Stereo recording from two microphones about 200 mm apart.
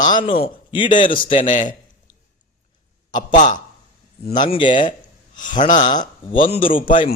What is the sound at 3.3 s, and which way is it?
Speech, 40° left (ahead or behind).